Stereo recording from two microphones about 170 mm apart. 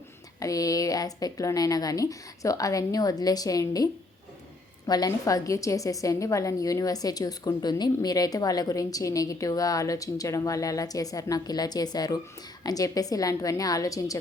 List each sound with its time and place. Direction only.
0.3 s a woman's voice: 20° left (ahead or behind)
4.9 s a woman's voice: 20° left (ahead or behind)